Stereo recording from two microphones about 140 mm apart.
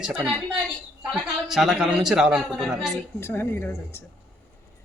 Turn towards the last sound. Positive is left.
turn(degrees=15)  # may be behind; listen again after turning